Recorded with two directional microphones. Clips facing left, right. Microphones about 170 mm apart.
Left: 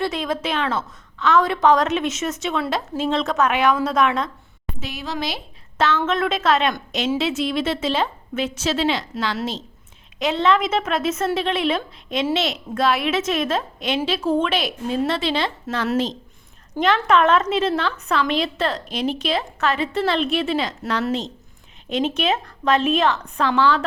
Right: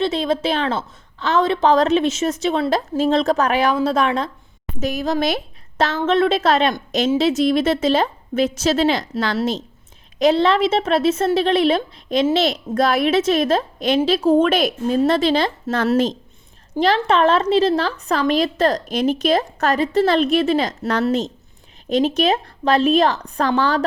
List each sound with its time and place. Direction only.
0.0 s a woman's voice: 30° right (ahead or behind)
4.8 s a woman's voice: 45° right (ahead or behind)
16.8 s a woman's voice: 35° right (ahead or behind)